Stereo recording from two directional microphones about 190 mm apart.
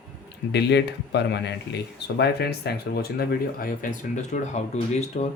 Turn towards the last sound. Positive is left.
turn(degrees=40)  # may be behind; listen again after turning